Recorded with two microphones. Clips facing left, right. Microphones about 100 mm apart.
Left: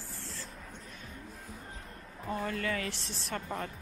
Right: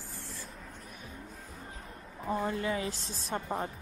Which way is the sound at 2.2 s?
20° right (ahead or behind).